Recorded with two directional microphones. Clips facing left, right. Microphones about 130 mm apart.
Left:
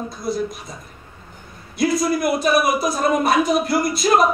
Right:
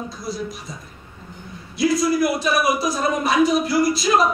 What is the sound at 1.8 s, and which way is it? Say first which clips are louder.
A man's voice: right 1 dB; 55° left (ahead or behind).